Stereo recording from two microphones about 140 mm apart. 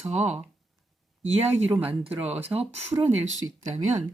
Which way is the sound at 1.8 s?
10° right (ahead or behind).